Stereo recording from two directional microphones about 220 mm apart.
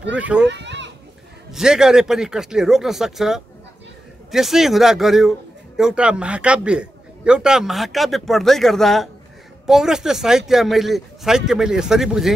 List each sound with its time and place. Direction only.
0.0 s a man's voice: 5° right (ahead or behind)
0.5 s a sound: 55° right (ahead or behind)
1.5 s a man's voice: centre (ahead or behind)